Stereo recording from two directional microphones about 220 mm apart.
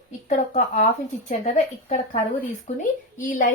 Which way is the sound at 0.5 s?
35° left (ahead or behind).